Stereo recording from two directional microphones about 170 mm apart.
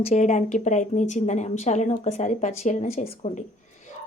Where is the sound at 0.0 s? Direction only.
40° left (ahead or behind).